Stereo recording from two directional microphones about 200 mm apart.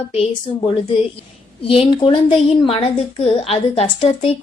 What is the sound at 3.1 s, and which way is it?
A woman's voice, 30° left (ahead or behind).